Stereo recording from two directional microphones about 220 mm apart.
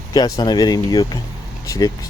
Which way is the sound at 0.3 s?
20° left (ahead or behind).